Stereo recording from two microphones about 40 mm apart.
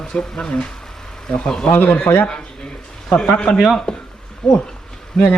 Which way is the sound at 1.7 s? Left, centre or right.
Left.